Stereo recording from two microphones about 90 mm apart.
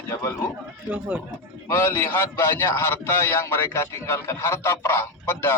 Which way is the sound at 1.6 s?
25° left (ahead or behind).